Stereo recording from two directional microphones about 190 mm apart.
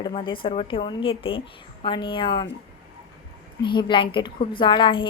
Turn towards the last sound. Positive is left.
turn(degrees=25)  # may be behind; listen again after turning